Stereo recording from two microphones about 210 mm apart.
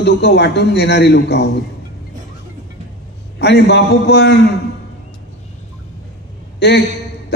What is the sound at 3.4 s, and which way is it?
A man's voice, 55° left (ahead or behind).